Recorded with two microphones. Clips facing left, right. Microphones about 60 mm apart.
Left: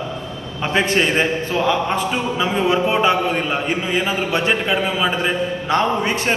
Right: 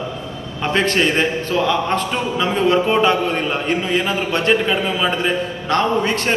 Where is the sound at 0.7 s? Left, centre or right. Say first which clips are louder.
Even; centre.